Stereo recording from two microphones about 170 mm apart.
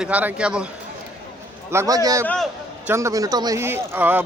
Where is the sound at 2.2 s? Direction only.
5° left (ahead or behind).